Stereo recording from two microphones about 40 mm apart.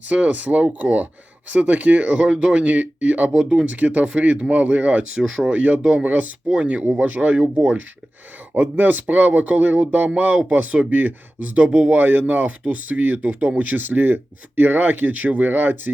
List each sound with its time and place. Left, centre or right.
0.1 s speech: right
3.3 s speech: centre
3.7 s speech: right
5.1 s speech: centre
5.5 s speech: right
6.1 s speech: right
11.7 s speech: right
11.9 s speech: right
12.2 s speech: right